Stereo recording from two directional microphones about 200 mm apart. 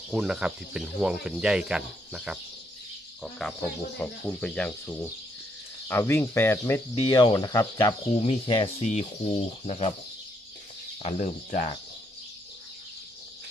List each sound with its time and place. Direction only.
0.1 s speech: 5° right (ahead or behind)
3.9 s speech: 5° left (ahead or behind); by 9.9 s 30° left (ahead or behind)
11.0 s speech: 30° left (ahead or behind)